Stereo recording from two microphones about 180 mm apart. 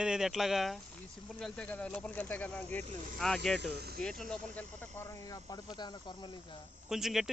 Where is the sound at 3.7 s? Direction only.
60° right (ahead or behind).